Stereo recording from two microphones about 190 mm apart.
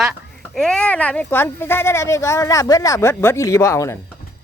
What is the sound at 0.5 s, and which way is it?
Speech, 5° left (ahead or behind).